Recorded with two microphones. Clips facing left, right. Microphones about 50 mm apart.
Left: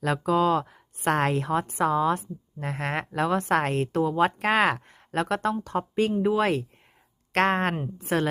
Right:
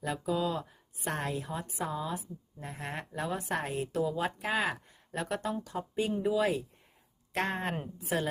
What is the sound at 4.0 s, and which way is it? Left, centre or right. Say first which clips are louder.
A woman's voice: left 8 dB; left.